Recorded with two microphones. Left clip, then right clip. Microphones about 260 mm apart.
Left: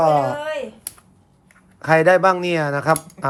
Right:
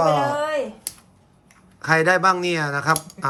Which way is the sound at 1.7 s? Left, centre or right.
Centre.